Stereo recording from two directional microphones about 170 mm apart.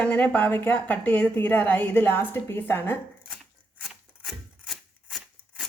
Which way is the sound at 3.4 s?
Centre (ahead or behind).